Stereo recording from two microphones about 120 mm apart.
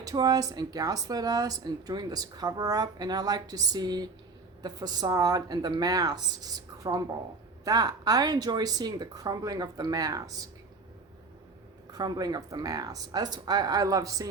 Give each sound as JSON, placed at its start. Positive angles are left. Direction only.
{"t": 0.0, "sound": "speech", "side_deg": -30}
{"t": 11.9, "sound": "speech", "side_deg": -35}